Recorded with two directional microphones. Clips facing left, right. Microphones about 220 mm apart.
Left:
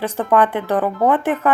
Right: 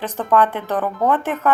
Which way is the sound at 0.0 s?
15° left (ahead or behind).